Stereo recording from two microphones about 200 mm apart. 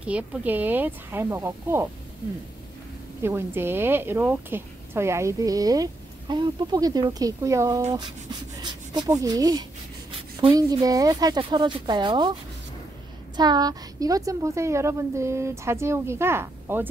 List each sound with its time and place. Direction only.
0.0 s speech: 5° right (ahead or behind)
3.2 s speech: 10° right (ahead or behind)
13.4 s speech: 20° right (ahead or behind)